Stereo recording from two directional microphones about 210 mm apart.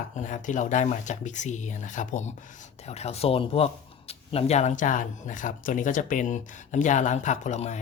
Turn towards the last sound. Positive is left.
turn(degrees=35)  # may be behind; listen again after turning